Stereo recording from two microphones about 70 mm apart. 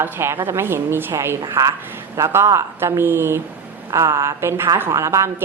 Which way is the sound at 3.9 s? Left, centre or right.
Right.